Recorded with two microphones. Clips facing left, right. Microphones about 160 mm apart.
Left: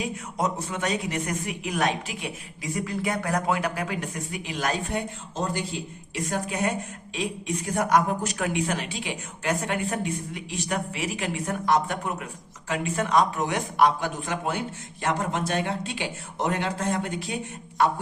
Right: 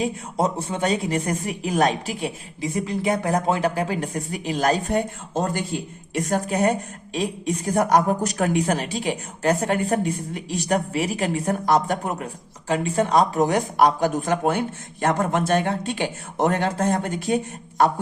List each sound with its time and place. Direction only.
0.0 s speech: 30° right (ahead or behind)